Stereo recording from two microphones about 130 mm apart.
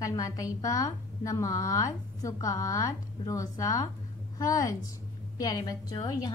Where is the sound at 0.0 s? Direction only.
25° left (ahead or behind).